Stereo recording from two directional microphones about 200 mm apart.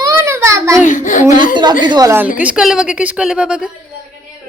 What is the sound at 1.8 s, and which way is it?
A child's voice, 20° right (ahead or behind).